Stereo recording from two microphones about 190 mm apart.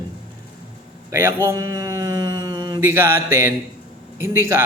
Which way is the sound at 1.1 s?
15° right (ahead or behind).